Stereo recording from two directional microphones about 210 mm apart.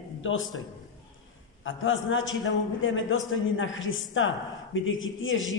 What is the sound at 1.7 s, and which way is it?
A man's voice, 65° left (ahead or behind).